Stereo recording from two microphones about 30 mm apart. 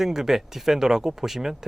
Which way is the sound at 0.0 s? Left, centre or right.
Centre.